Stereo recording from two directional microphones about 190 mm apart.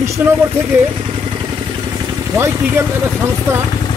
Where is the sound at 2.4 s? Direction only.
10° right (ahead or behind).